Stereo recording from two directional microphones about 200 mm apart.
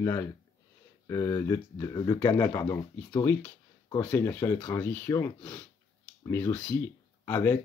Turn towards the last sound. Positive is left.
turn(degrees=10)  # may be behind; listen again after turning